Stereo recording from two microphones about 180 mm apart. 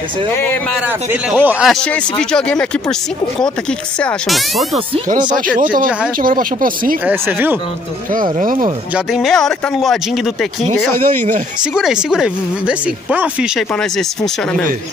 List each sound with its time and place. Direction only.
0.3 s speech: 10° left (ahead or behind)
0.8 s speech: 10° right (ahead or behind)
5.6 s speech: 50° right (ahead or behind)
7.1 s speech: 10° right (ahead or behind)
8.1 s speech: 50° right (ahead or behind)
8.9 s speech: centre (ahead or behind)
11.1 s speech: 45° right (ahead or behind)
11.7 s speech: 5° right (ahead or behind)